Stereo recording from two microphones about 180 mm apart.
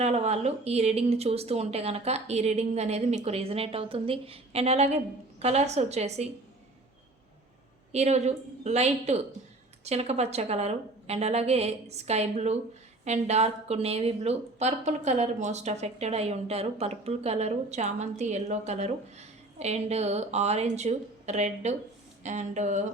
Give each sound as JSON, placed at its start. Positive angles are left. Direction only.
{"t": 0.0, "sound": "a woman's voice", "side_deg": -40}
{"t": 7.9, "sound": "a woman's voice", "side_deg": -40}